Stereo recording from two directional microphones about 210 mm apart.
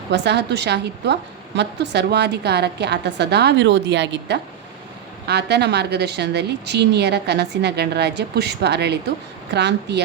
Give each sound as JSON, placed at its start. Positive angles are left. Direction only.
{"t": 0.1, "sound": "a woman's voice", "side_deg": -55}